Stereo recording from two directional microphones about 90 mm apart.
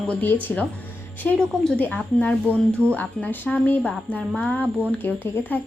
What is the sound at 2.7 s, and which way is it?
Speech, 25° right (ahead or behind).